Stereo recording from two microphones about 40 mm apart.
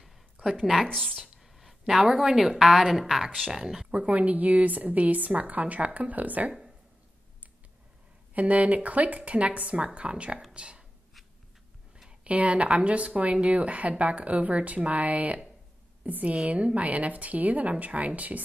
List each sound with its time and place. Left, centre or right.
0.4 s speech: centre
1.2 s a woman's voice: centre
3.9 s a woman's voice: right
8.4 s a woman's voice: right
12.3 s a woman's voice: right